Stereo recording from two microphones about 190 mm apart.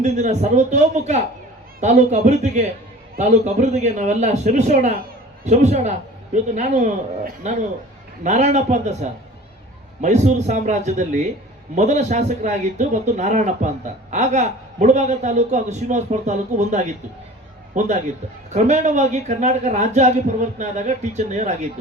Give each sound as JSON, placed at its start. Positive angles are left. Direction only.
{"t": 0.0, "sound": "speech", "side_deg": -35}